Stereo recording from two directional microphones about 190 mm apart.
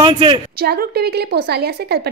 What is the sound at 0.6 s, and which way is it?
A woman's voice, 55° right (ahead or behind).